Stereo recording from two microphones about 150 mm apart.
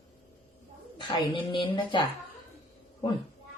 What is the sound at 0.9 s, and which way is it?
Speech, 30° left (ahead or behind).